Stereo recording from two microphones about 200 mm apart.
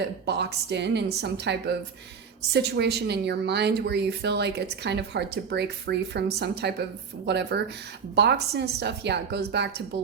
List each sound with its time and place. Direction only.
0.0 s speech: 55° right (ahead or behind)